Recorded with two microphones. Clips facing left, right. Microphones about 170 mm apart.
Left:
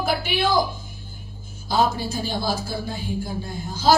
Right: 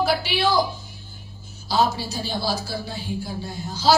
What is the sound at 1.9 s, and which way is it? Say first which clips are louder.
A woman's voice: left 2 dB; 50° left (ahead or behind).